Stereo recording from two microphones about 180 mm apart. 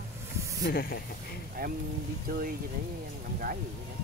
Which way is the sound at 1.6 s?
55° right (ahead or behind).